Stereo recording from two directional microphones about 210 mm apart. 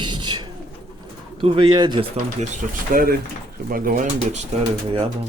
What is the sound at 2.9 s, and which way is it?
Speech, 40° right (ahead or behind).